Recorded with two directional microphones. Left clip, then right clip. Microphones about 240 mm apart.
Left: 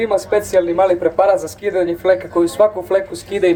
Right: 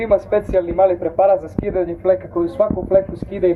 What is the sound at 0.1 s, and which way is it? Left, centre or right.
Speech, left.